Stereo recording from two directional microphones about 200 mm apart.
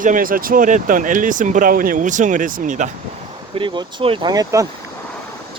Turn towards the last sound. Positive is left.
turn(degrees=-15)  # may be behind; listen again after turning